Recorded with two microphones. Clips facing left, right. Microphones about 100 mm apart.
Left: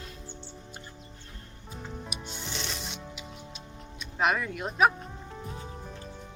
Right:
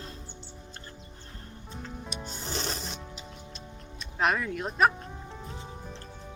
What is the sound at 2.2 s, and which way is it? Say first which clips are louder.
Rub: right 5 dB; 40° right (ahead or behind).